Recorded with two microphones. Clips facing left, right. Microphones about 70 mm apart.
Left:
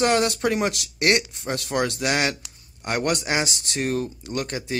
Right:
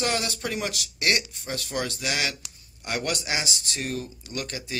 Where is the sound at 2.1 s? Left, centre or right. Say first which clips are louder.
Left 6 dB; left.